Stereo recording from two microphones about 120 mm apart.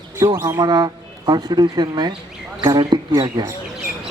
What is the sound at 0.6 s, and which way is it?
Speech, 35° right (ahead or behind).